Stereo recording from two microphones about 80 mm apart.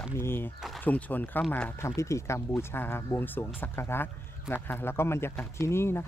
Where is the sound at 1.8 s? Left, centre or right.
Left.